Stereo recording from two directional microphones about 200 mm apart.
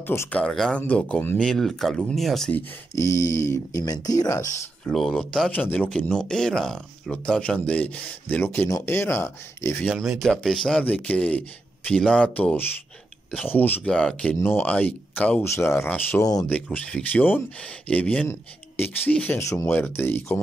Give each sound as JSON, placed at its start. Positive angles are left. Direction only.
{"t": 0.0, "sound": "speech", "side_deg": 10}
{"t": 2.9, "sound": "speech", "side_deg": 15}
{"t": 4.8, "sound": "speech", "side_deg": 0}
{"t": 9.8, "sound": "speech", "side_deg": -5}
{"t": 16.7, "sound": "speech", "side_deg": 5}